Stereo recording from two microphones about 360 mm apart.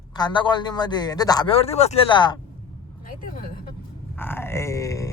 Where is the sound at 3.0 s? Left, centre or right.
Left.